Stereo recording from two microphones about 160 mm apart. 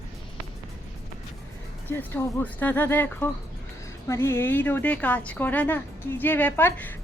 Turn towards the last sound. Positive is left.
turn(degrees=10)  # may be behind; listen again after turning